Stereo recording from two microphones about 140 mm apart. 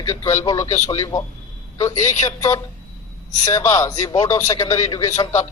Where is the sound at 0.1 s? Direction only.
20° left (ahead or behind).